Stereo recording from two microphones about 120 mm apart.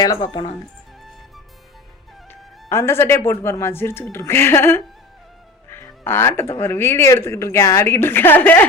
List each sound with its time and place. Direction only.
0.0 s speech: 30° left (ahead or behind)
2.6 s speech: 20° left (ahead or behind)